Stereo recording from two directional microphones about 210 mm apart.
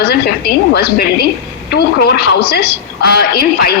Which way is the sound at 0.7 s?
50° left (ahead or behind).